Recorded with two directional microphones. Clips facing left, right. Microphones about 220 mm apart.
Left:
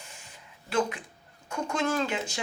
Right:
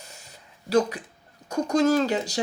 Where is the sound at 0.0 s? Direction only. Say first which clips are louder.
Right 2 dB; 40° right (ahead or behind).